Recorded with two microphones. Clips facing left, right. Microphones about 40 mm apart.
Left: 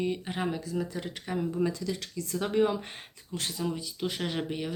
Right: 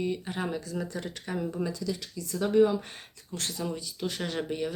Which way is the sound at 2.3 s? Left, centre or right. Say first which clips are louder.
Right 3 dB; left.